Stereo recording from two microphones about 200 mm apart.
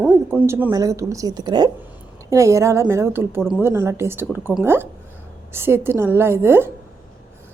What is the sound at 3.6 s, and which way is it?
A woman's voice, 15° right (ahead or behind).